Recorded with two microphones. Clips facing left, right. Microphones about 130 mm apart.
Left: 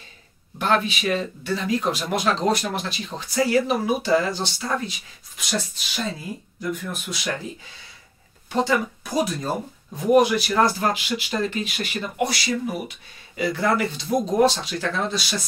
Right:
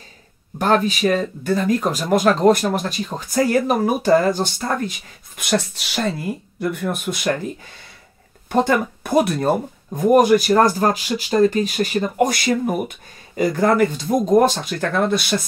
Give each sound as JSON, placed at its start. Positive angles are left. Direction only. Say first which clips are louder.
{"t": 0.6, "sound": "speech", "louder": "right 5 dB", "side_deg": -40}
{"t": 5.4, "sound": "speech", "louder": "right 7 dB", "side_deg": -60}
{"t": 8.5, "sound": "speech", "louder": "right 4 dB", "side_deg": -55}